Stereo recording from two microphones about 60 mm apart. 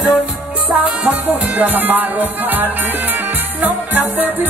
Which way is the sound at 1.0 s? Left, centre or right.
Right.